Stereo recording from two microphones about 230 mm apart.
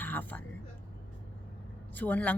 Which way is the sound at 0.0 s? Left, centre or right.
Centre.